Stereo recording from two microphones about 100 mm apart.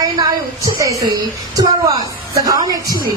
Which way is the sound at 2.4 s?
35° right (ahead or behind).